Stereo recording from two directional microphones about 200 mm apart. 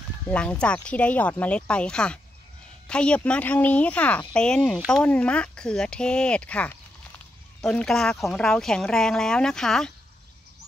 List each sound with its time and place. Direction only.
0.3 s speech: 5° left (ahead or behind)